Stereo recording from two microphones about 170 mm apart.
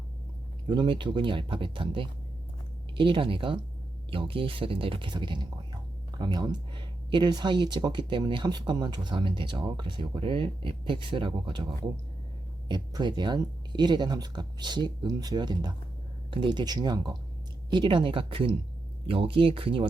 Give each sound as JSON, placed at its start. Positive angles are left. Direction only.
{"t": 0.7, "sound": "speech", "side_deg": -25}
{"t": 12.6, "sound": "speech", "side_deg": -25}